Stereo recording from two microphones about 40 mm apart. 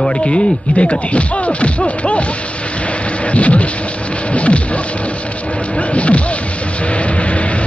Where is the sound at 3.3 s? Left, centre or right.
Left.